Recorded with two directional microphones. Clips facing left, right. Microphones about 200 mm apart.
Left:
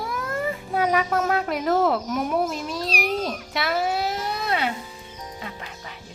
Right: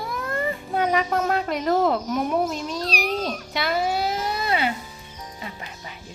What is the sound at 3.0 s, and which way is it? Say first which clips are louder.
Cat: even; 5° left (ahead or behind).